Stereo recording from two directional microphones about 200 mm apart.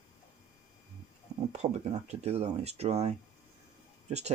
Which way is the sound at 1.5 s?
35° right (ahead or behind).